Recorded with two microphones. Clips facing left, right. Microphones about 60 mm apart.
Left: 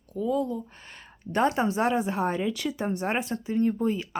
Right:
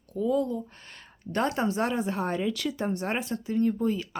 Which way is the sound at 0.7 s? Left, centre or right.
Centre.